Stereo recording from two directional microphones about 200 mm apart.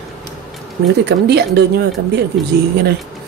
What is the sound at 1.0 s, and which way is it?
A woman's voice, 55° right (ahead or behind).